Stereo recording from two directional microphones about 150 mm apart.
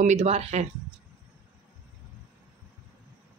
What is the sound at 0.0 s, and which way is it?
Speech, 45° right (ahead or behind).